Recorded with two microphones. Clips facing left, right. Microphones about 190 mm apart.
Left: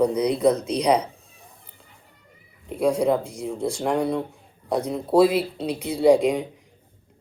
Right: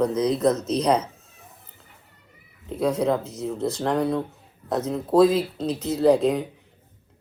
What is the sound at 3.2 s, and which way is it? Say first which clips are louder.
Speech: left 1 dB; 30° left (ahead or behind).